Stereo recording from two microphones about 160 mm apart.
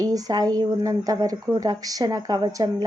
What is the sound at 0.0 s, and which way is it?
A woman's voice, 25° right (ahead or behind).